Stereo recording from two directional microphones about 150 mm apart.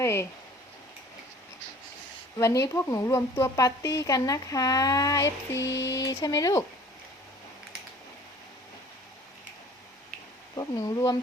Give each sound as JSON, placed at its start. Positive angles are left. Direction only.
{"t": 0.0, "sound": "a sound", "side_deg": 15}
{"t": 2.4, "sound": "speech", "side_deg": 20}
{"t": 10.5, "sound": "speech", "side_deg": 25}